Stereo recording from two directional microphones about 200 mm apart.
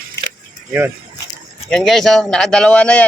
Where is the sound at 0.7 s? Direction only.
10° right (ahead or behind).